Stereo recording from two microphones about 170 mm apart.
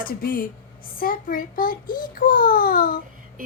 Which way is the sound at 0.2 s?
60° left (ahead or behind).